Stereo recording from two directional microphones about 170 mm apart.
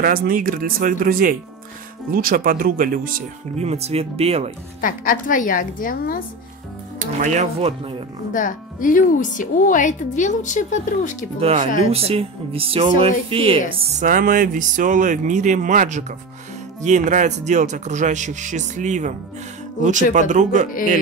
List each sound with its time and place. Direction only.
0.0 s speech: 55° right (ahead or behind)
3.5 s speech: 40° right (ahead or behind)
4.8 s speech: 50° left (ahead or behind)
7.0 s speech: 45° right (ahead or behind)
8.3 s speech: 50° left (ahead or behind)
11.3 s speech: 35° right (ahead or behind)
13.9 s speech: 55° right (ahead or behind)